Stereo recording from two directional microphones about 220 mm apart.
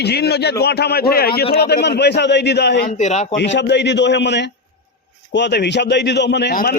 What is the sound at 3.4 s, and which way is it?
A man's voice, 50° left (ahead or behind).